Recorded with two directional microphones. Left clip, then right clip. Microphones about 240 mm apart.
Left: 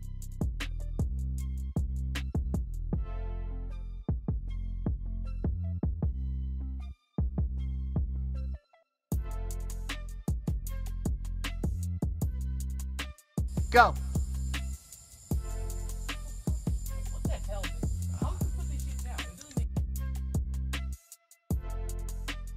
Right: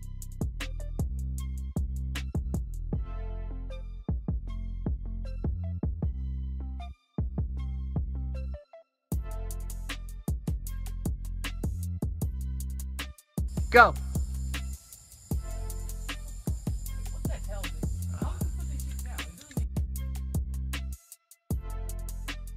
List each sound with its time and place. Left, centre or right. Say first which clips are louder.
0.4 s music: even; centre
4.0 s music: left 1 dB; centre
7.2 s music: even; centre
9.1 s music: even; centre